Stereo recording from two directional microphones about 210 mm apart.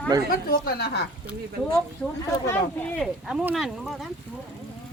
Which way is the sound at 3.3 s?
5° right (ahead or behind).